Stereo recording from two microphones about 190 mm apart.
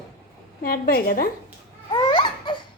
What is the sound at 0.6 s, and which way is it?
Speech, 50° left (ahead or behind).